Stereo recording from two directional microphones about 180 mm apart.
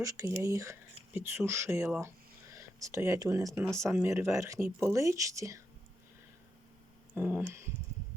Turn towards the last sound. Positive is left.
turn(degrees=-15)  # may be behind; listen again after turning